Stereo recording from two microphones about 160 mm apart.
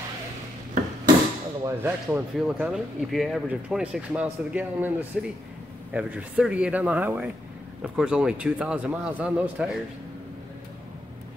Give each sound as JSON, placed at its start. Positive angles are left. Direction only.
{"t": 1.6, "sound": "a man's voice", "side_deg": -15}
{"t": 2.3, "sound": "a man's voice", "side_deg": 0}